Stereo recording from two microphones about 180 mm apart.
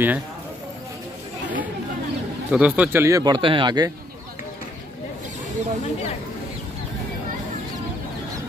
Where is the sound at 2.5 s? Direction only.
10° right (ahead or behind); by 3.9 s 25° right (ahead or behind).